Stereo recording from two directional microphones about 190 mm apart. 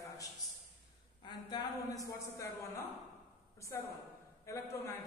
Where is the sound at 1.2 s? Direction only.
25° left (ahead or behind).